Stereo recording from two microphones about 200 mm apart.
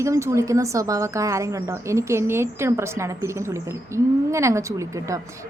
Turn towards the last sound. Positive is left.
turn(degrees=-15)  # may be behind; listen again after turning